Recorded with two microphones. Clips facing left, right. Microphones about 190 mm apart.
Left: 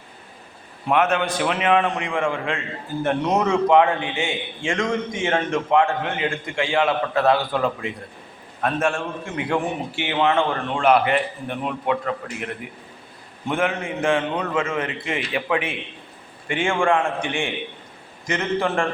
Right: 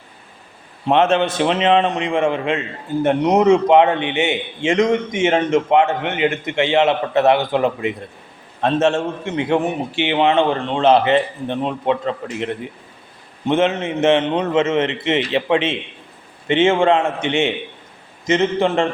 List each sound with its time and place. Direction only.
0.9 s a man's voice: 25° right (ahead or behind)